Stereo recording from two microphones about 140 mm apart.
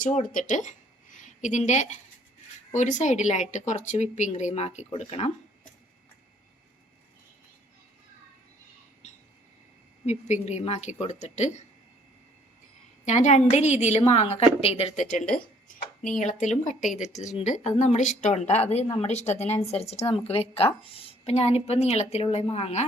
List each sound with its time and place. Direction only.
0.0 s a woman's voice: 65° left (ahead or behind)
10.1 s a woman's voice: 55° left (ahead or behind)
13.1 s a woman's voice: 55° left (ahead or behind)